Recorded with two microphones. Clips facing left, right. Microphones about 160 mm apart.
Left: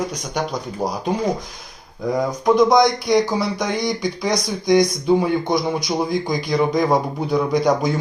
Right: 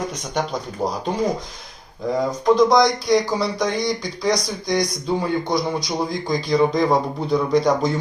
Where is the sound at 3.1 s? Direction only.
20° left (ahead or behind).